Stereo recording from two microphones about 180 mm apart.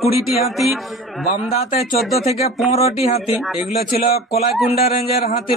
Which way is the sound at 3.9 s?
55° left (ahead or behind).